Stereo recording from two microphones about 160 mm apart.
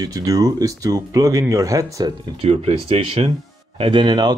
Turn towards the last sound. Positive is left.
turn(degrees=-25)  # may be behind; listen again after turning